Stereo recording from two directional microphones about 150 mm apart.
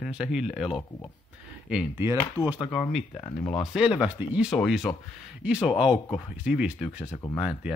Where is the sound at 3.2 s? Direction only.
25° left (ahead or behind).